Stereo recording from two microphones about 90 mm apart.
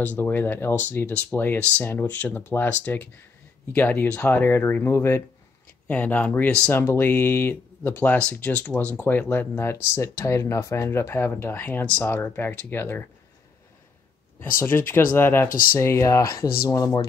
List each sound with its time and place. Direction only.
0.0 s speech: 20° left (ahead or behind)
5.9 s speech: 15° left (ahead or behind)
6.7 s speech: 25° left (ahead or behind)
14.4 s speech: 25° left (ahead or behind); by 17.1 s 40° left (ahead or behind)